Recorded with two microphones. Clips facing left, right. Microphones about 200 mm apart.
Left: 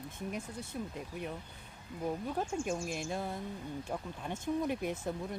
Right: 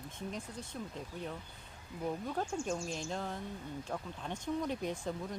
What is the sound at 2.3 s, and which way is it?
Speech, 10° left (ahead or behind).